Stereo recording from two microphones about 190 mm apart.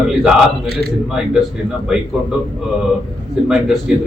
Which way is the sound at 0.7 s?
55° right (ahead or behind).